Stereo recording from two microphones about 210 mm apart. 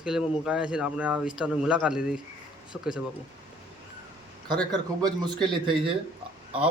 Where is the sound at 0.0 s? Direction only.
5° right (ahead or behind).